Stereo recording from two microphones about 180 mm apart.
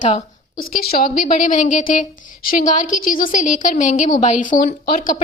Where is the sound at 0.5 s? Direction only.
55° left (ahead or behind).